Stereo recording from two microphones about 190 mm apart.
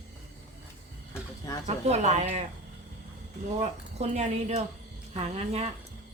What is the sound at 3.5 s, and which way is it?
A woman's voice, 35° right (ahead or behind).